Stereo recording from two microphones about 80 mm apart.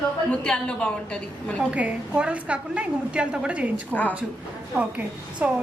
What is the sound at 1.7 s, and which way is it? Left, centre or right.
A woman's voice, centre.